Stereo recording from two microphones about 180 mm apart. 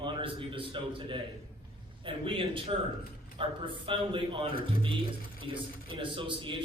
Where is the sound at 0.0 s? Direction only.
30° right (ahead or behind).